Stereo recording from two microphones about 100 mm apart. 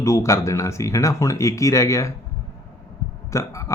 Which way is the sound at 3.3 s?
30° left (ahead or behind).